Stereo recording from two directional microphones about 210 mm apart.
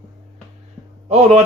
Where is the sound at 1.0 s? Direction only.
30° right (ahead or behind).